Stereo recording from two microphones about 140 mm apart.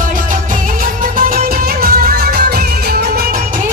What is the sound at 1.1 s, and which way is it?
Music, 85° right.